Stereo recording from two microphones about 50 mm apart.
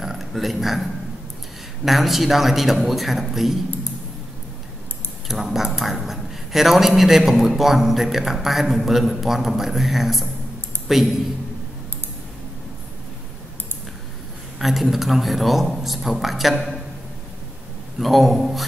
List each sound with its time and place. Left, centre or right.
0.0 s a sound: centre
1.9 s a man's voice: centre
5.3 s a man's voice: centre
14.6 s a man's voice: centre
17.9 s a man's voice: centre